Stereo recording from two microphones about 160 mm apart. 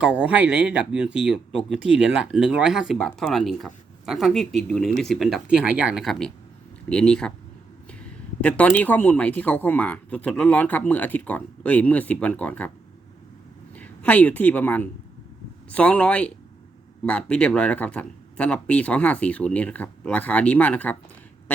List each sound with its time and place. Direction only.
0.0 s speech: 10° right (ahead or behind); by 12.7 s 10° left (ahead or behind)
13.7 s a woman's voice: 10° left (ahead or behind)